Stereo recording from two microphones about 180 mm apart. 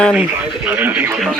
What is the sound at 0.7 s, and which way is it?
Speech, 10° right (ahead or behind).